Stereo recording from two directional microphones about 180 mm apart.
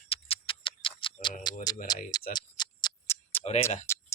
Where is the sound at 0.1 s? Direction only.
30° left (ahead or behind).